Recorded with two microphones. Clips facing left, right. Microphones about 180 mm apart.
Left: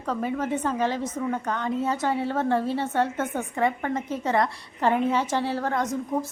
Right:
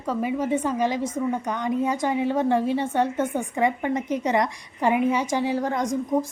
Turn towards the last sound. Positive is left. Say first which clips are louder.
# right 3 dB
turn(degrees=-15)  # may be behind; listen again after turning